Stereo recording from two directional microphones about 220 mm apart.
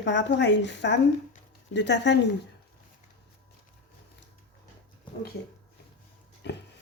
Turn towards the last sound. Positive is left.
turn(degrees=50)  # may be behind; listen again after turning